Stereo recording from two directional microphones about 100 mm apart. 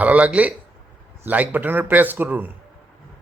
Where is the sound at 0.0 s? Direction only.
15° right (ahead or behind).